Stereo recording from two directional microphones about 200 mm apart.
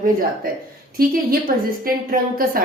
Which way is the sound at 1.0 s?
50° right (ahead or behind).